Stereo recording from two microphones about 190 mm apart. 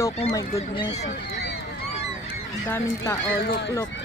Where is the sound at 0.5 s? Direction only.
30° left (ahead or behind).